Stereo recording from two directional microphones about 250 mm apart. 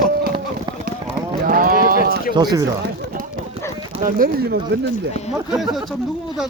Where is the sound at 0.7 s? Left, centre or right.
Centre.